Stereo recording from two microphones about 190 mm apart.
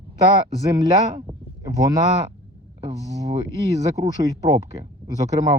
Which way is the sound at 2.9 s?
20° right (ahead or behind).